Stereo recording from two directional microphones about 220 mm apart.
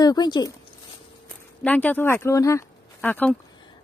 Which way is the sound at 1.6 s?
5° left (ahead or behind).